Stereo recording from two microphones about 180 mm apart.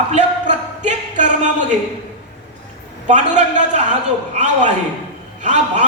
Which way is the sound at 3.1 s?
40° right (ahead or behind).